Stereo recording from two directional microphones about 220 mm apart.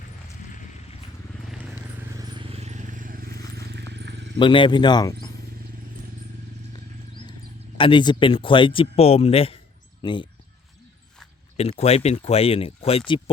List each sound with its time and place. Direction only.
1.5 s vehicle: 5° right (ahead or behind); by 3.4 s 40° right (ahead or behind)
3.7 s a sound: 50° right (ahead or behind)
4.4 s speech: 20° left (ahead or behind)
7.8 s speech: 20° left (ahead or behind)
11.5 s speech: 30° left (ahead or behind)